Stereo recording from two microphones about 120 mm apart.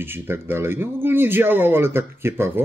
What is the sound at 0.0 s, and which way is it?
Speech, 20° right (ahead or behind).